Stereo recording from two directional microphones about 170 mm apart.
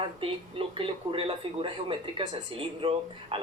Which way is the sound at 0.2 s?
30° right (ahead or behind).